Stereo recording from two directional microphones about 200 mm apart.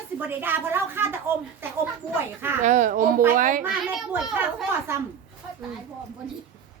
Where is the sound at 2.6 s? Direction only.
40° right (ahead or behind).